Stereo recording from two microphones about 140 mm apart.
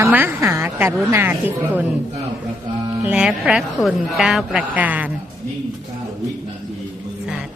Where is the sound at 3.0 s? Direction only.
10° right (ahead or behind).